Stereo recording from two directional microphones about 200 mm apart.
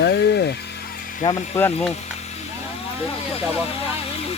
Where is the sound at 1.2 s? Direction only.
25° left (ahead or behind).